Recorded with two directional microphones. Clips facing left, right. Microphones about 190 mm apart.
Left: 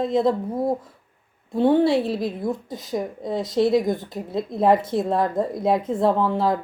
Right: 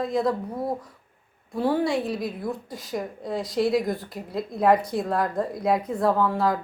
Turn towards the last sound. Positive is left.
turn(degrees=25)  # may be behind; listen again after turning